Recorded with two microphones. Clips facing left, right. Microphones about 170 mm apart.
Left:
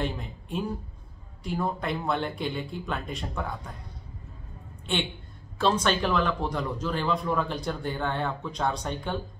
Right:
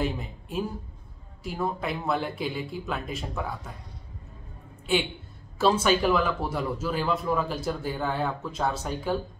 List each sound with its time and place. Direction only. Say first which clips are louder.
0.0 s a man's voice: right 2 dB; 5° right (ahead or behind)
4.9 s a man's voice: right 4 dB; 5° right (ahead or behind)